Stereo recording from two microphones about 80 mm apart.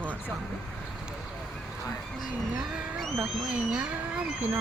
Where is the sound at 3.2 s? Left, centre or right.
Centre.